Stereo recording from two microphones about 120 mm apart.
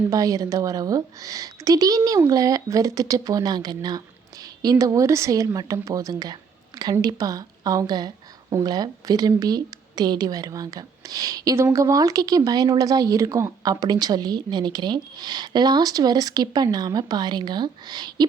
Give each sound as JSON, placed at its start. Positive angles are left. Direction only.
{"t": 0.1, "sound": "a woman's voice", "side_deg": -30}